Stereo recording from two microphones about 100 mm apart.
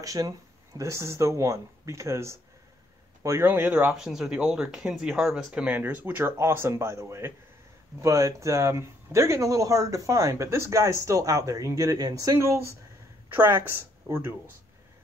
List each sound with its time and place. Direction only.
0.0 s speech: 35° right (ahead or behind)
3.9 s speech: 5° right (ahead or behind); by 14.3 s 25° right (ahead or behind)